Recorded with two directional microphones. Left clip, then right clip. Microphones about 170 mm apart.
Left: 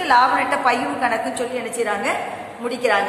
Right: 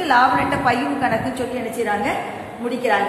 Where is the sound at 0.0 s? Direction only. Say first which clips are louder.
Even; 10° left (ahead or behind).